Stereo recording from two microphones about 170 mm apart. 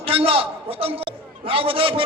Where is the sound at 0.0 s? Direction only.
35° right (ahead or behind).